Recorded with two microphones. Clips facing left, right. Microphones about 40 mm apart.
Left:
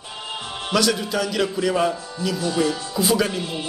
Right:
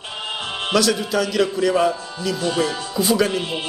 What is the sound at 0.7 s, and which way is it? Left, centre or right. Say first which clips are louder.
A man's voice: right 2 dB; centre.